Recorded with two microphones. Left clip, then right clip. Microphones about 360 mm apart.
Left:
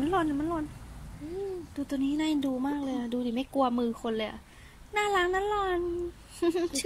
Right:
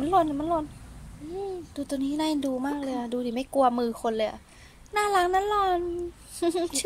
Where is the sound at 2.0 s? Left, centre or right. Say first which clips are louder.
Right 1 dB; right.